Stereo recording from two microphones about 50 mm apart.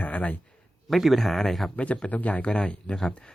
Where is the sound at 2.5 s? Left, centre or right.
Left.